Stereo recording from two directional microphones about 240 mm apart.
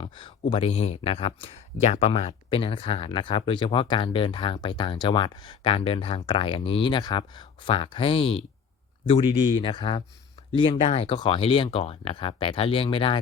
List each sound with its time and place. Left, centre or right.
0.0 s speech: left